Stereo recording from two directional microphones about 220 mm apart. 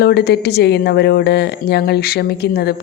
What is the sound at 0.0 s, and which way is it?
A woman's voice, 50° left (ahead or behind).